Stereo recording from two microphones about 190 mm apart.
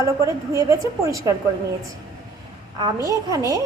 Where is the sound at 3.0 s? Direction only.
15° right (ahead or behind).